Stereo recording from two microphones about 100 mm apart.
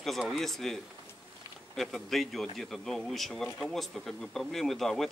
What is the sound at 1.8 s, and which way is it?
Speech, centre (ahead or behind).